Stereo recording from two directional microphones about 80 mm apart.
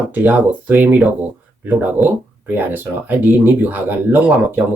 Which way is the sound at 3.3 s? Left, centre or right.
Right.